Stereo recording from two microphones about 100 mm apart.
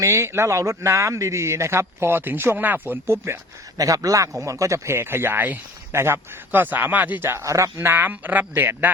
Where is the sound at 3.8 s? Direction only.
35° right (ahead or behind).